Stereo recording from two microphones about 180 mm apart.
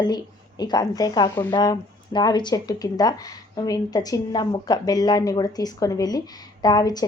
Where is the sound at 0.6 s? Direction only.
20° left (ahead or behind).